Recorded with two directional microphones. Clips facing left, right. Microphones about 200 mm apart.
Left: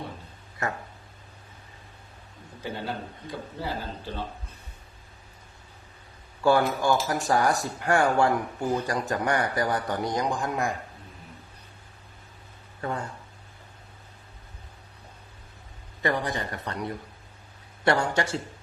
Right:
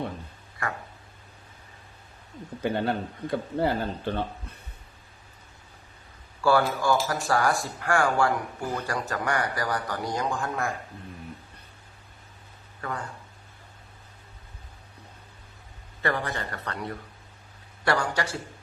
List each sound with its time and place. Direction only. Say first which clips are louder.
2.7 s speech: right 6 dB; 60° right (ahead or behind)
6.4 s speech: left 1 dB; 20° left (ahead or behind)
12.8 s speech: left 3 dB; 25° left (ahead or behind)
16.0 s speech: left 1 dB; 15° left (ahead or behind)